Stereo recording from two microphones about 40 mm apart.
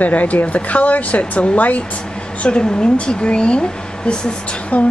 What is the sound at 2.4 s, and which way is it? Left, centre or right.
Speech, left.